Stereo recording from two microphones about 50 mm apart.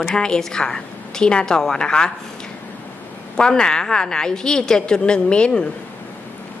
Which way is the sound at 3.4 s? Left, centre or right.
Centre.